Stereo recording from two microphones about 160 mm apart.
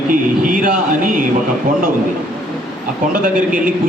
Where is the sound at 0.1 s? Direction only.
60° right (ahead or behind).